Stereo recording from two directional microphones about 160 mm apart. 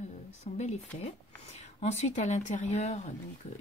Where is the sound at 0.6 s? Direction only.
45° left (ahead or behind).